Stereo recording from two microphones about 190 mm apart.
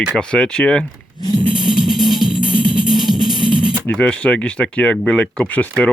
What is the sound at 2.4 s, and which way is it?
Music, 25° right (ahead or behind).